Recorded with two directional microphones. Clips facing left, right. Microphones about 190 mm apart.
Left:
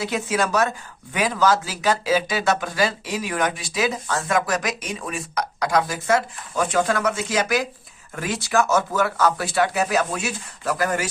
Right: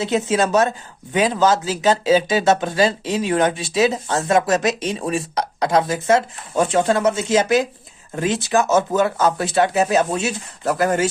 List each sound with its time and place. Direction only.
0.0 s speech: 25° right (ahead or behind)